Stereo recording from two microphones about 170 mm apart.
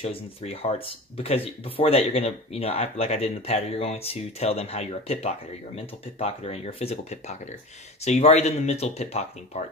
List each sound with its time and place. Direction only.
0.0 s speech: 35° left (ahead or behind)